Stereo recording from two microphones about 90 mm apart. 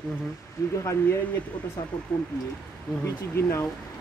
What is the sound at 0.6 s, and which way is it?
Speech, 35° left (ahead or behind).